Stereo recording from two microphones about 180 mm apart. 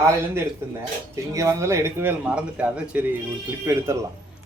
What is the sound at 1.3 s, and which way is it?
Speech, 15° right (ahead or behind).